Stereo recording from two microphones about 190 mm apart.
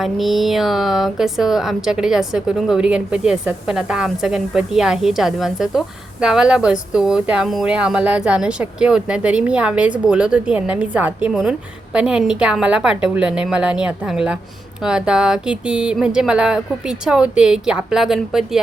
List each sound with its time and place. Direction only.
0.0 s a woman's voice: centre (ahead or behind)